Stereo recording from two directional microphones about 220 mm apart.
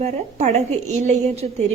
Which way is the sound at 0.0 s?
30° right (ahead or behind).